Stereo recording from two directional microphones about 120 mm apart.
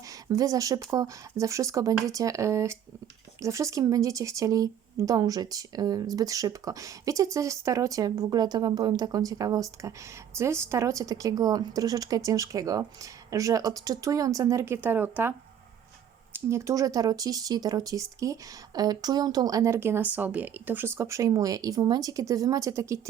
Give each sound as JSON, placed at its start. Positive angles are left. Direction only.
{"t": 0.1, "sound": "speech", "side_deg": -30}